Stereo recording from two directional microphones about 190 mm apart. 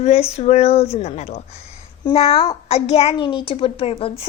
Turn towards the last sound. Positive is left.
turn(degrees=30)  # may be behind; listen again after turning